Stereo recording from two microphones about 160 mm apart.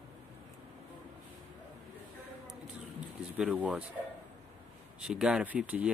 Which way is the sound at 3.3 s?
5° right (ahead or behind).